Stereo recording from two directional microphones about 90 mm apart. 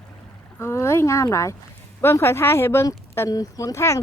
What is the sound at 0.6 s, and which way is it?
Speech, 30° left (ahead or behind).